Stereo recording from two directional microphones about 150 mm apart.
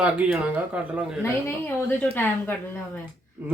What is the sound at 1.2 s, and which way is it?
Speech, 15° left (ahead or behind).